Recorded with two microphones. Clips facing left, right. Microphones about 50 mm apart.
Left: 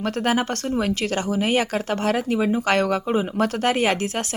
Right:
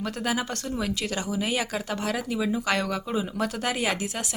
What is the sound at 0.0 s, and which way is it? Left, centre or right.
Speech, left.